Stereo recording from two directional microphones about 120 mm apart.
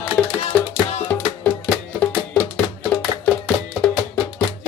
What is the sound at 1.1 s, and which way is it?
Music, 15° left (ahead or behind).